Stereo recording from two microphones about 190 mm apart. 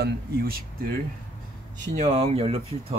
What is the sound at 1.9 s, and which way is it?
Speech, 35° right (ahead or behind).